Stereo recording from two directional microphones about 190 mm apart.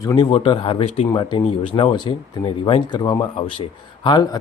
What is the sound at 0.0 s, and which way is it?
Speech, 20° left (ahead or behind).